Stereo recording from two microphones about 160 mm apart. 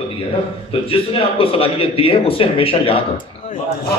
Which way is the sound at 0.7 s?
35° left (ahead or behind).